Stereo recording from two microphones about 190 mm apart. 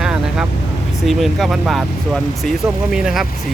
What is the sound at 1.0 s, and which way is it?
Speech, centre (ahead or behind).